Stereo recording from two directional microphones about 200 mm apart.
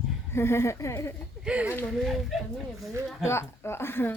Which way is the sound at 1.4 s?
5° right (ahead or behind).